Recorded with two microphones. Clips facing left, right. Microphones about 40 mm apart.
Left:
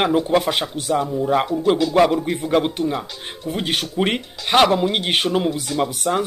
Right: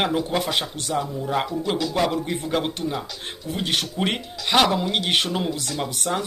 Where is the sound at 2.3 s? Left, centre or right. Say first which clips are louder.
Left 5 dB; centre.